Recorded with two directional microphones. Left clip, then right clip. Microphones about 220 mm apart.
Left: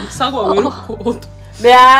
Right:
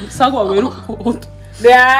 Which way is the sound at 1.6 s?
25° left (ahead or behind).